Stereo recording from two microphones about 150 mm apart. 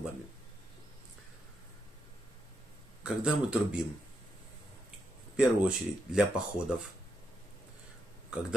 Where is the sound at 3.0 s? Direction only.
5° right (ahead or behind).